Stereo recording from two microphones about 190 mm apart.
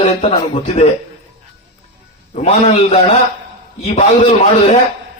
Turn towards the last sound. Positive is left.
turn(degrees=35)  # may be behind; listen again after turning